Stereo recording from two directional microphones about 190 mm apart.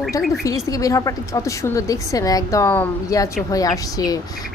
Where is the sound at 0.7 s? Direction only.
15° left (ahead or behind).